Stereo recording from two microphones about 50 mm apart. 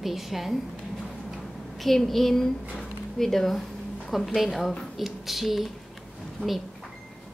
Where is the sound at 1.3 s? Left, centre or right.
Centre.